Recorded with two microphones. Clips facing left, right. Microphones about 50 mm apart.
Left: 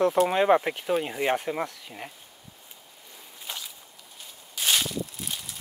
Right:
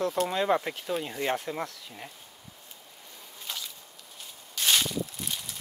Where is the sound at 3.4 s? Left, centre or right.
Centre.